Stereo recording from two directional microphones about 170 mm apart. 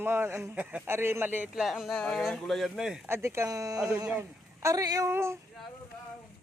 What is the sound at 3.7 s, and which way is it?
Speech, 5° right (ahead or behind).